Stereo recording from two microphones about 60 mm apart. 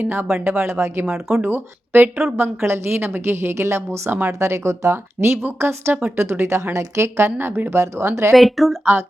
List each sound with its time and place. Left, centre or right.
0.1 s a woman's voice: right
7.3 s speech: right
7.7 s a woman's voice: right
8.4 s speech: centre
8.8 s speech: right